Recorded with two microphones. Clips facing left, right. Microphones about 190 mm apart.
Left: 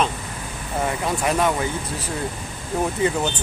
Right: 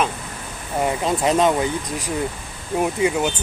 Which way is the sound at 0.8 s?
20° right (ahead or behind).